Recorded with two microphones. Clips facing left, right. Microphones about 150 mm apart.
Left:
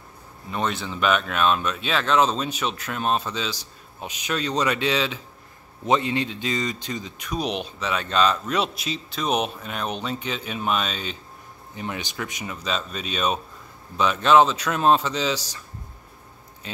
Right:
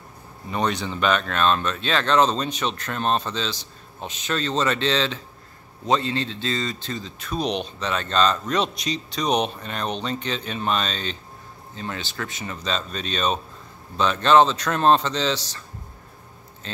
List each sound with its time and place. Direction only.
0.5 s speech: centre (ahead or behind)
16.6 s speech: 10° left (ahead or behind)